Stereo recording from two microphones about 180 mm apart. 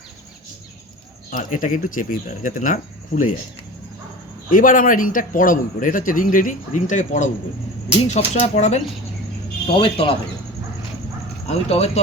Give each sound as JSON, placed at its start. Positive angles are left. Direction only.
{"t": 1.3, "sound": "speech", "side_deg": 45}
{"t": 4.5, "sound": "speech", "side_deg": 50}
{"t": 11.4, "sound": "speech", "side_deg": 35}